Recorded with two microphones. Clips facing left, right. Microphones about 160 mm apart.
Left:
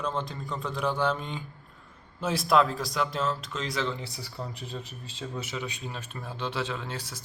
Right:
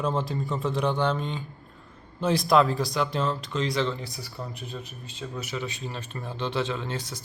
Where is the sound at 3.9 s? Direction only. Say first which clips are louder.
Right 1 dB; 25° left (ahead or behind).